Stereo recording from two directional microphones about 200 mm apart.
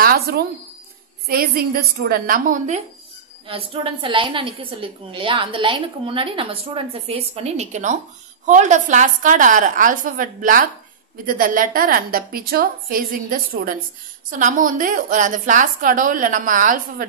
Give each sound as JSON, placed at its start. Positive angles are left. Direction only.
{"t": 0.0, "sound": "a sound", "side_deg": -50}
{"t": 1.2, "sound": "a woman's voice", "side_deg": -50}
{"t": 3.4, "sound": "a woman's voice", "side_deg": -25}